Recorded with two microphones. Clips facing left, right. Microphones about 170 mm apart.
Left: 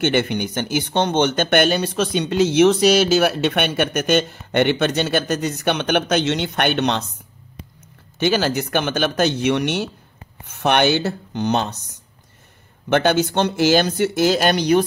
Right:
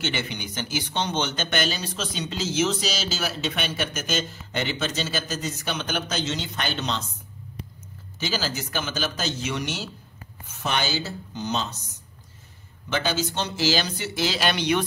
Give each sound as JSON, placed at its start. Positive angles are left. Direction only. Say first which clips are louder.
{"t": 0.0, "sound": "speech", "louder": "left 11 dB", "side_deg": 55}
{"t": 8.2, "sound": "speech", "louder": "left 10 dB", "side_deg": 60}
{"t": 12.9, "sound": "speech", "louder": "left 9 dB", "side_deg": 60}